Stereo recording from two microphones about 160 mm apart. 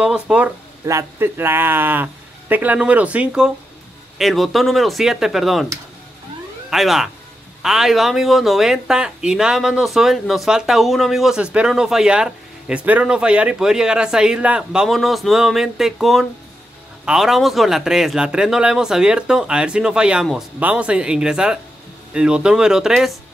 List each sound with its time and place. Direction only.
0.0 s speech: 5° right (ahead or behind)
0.8 s speech: 15° right (ahead or behind); by 5.7 s centre (ahead or behind)
6.7 s speech: centre (ahead or behind)